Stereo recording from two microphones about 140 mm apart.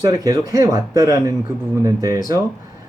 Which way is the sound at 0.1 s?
25° right (ahead or behind).